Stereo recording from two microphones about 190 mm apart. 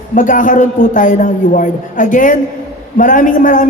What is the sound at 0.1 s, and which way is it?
A man's voice, 45° left (ahead or behind).